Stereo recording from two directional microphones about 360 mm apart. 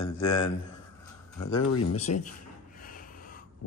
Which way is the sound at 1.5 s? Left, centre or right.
Left.